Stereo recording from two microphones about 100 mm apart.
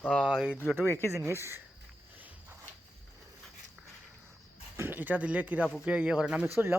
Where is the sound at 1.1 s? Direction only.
25° right (ahead or behind).